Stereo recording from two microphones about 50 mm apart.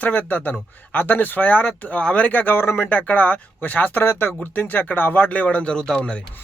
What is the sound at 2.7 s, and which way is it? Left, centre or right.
Speech, left.